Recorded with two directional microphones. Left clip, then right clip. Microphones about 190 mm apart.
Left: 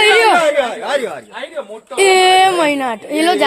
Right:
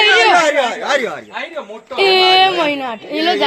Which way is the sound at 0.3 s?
50° right (ahead or behind).